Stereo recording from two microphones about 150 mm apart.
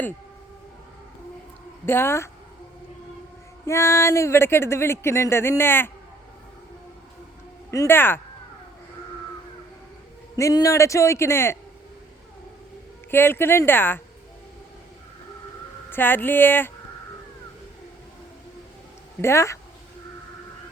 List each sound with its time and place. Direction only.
1.9 s speech: 15° left (ahead or behind)
3.7 s speech: 20° left (ahead or behind)
7.7 s speech: 15° left (ahead or behind)
10.3 s a man's voice: 20° left (ahead or behind)
13.1 s speech: 15° left (ahead or behind)
15.9 s speech: 15° left (ahead or behind)
19.2 s a man's voice: 20° left (ahead or behind)